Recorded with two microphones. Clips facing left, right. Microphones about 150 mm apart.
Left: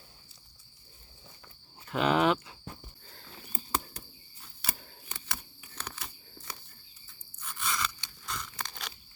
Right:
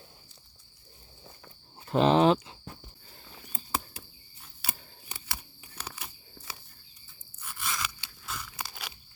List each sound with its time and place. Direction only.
1.9 s speech: 30° right (ahead or behind)
3.7 s a sound: 10° right (ahead or behind)
7.4 s crunch: 5° right (ahead or behind)